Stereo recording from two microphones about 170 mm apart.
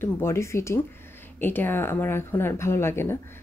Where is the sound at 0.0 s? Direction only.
15° left (ahead or behind).